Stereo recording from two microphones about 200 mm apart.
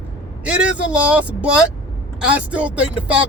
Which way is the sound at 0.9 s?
5° right (ahead or behind).